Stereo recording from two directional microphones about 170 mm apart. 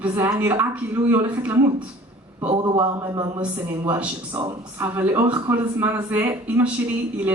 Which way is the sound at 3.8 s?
10° right (ahead or behind).